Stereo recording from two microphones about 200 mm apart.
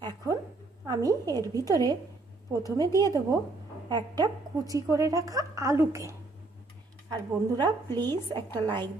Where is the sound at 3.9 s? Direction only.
20° right (ahead or behind).